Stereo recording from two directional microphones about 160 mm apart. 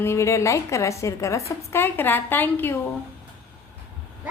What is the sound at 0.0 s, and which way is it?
A woman's voice, 15° left (ahead or behind).